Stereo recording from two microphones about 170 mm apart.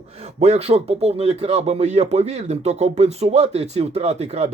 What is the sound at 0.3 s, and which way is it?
Speech, 40° right (ahead or behind).